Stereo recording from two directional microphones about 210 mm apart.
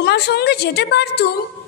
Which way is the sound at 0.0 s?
50° left (ahead or behind).